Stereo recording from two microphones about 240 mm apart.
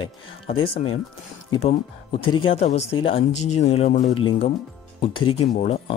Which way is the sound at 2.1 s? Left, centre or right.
Left.